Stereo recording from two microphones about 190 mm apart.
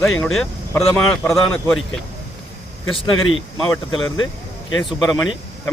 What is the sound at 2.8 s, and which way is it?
Speech, 90° left.